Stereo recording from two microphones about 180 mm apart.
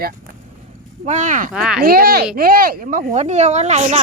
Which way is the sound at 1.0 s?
45° right (ahead or behind).